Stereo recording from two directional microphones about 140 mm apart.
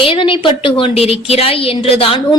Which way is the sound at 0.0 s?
40° left (ahead or behind).